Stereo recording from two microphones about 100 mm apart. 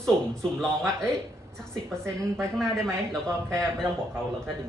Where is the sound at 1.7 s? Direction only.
5° left (ahead or behind).